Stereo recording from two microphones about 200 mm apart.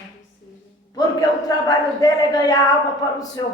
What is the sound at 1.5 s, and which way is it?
Speech, 20° left (ahead or behind).